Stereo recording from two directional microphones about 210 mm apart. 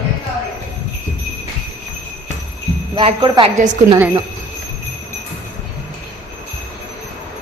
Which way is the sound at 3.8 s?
15° right (ahead or behind).